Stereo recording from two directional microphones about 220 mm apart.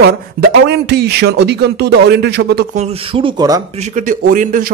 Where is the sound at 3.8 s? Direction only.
35° right (ahead or behind).